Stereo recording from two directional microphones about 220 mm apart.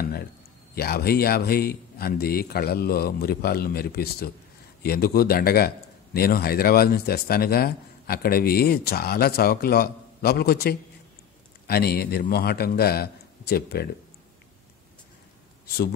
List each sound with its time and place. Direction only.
0.7 s speech: 45° left (ahead or behind)